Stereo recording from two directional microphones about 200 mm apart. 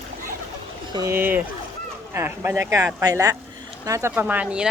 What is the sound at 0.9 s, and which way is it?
Speech, 15° right (ahead or behind).